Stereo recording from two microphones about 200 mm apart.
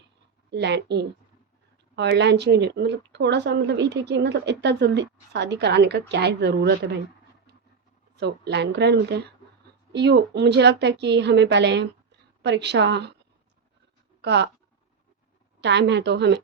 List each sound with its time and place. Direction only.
0.5 s speech: 60° right (ahead or behind)
8.1 s speech: 55° right (ahead or behind)
14.2 s speech: 60° right (ahead or behind)
15.6 s speech: 60° right (ahead or behind)